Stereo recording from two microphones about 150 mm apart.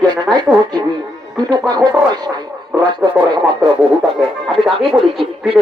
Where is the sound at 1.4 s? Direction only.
25° right (ahead or behind).